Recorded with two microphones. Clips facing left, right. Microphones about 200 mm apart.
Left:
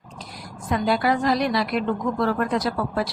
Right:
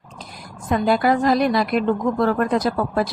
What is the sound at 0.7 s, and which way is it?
A woman's voice, 50° right (ahead or behind).